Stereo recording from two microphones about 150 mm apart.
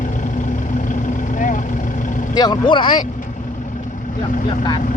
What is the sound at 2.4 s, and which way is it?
Speech, 30° left (ahead or behind).